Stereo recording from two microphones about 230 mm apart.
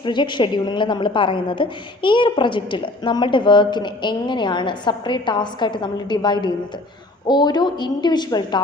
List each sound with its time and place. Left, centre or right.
0.0 s a woman's voice: centre